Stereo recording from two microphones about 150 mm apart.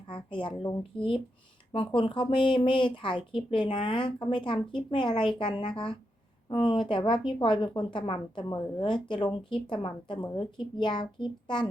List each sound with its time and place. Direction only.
0.1 s speech: 35° left (ahead or behind)